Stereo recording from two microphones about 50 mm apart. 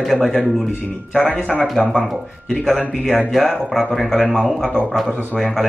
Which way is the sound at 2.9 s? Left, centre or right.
Centre.